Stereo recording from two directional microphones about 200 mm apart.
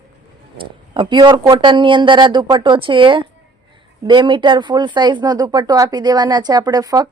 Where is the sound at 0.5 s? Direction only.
25° right (ahead or behind).